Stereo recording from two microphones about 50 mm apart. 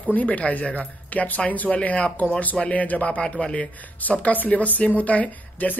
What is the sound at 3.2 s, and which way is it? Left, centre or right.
Speech, centre.